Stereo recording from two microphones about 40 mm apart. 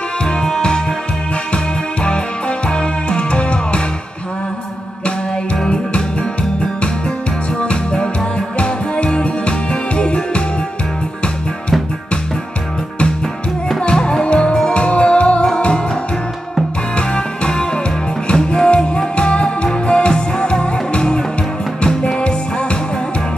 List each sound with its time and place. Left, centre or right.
0.2 s music: left
2.0 s music: left
7.6 s music: left
13.7 s music: left
16.9 s music: left